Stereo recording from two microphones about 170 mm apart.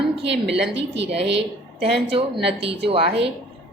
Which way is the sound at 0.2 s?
90° right.